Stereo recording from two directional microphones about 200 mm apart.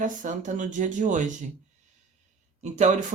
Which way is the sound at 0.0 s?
40° right (ahead or behind).